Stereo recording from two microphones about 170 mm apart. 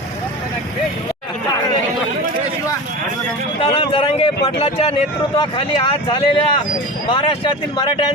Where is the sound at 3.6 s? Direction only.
30° left (ahead or behind).